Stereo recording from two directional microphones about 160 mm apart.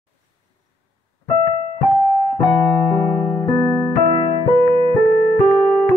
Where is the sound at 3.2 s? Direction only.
10° left (ahead or behind).